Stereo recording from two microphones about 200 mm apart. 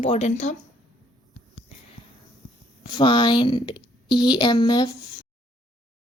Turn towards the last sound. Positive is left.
turn(degrees=20)  # may be behind; listen again after turning